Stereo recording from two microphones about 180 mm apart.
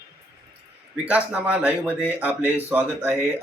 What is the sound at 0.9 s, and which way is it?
A man's voice, 10° right (ahead or behind).